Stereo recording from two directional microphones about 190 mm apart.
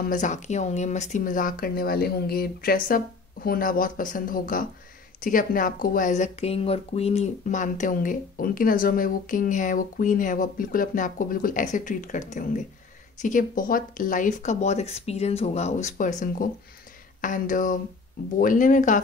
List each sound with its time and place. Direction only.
0.0 s speech: 40° left (ahead or behind)